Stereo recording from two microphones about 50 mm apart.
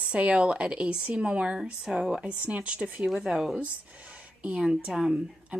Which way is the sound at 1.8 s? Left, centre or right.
Centre.